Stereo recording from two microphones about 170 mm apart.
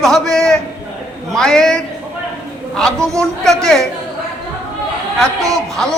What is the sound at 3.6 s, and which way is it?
Speech, 5° left (ahead or behind).